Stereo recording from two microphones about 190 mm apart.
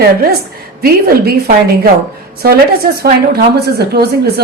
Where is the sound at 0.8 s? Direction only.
50° right (ahead or behind).